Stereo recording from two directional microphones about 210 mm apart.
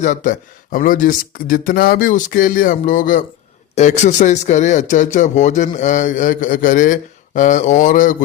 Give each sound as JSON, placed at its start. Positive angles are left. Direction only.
{"t": 0.0, "sound": "speech", "side_deg": 35}